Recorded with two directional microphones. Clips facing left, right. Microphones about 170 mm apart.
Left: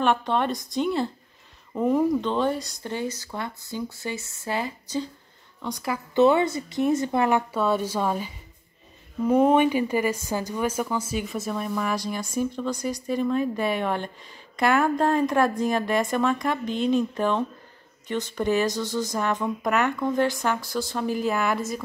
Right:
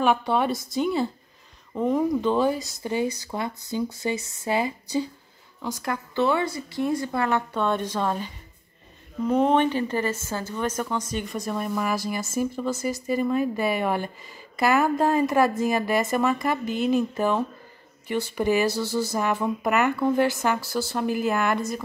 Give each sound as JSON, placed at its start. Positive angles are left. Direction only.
{"t": 0.0, "sound": "speech", "side_deg": -5}
{"t": 6.1, "sound": "a woman's voice", "side_deg": 20}